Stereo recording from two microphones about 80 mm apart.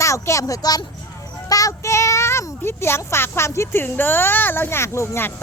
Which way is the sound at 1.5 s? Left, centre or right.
Left.